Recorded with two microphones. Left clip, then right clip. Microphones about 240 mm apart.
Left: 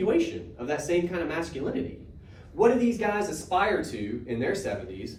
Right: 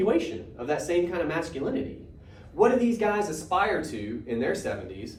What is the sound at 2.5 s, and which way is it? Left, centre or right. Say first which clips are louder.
Speech: even; centre.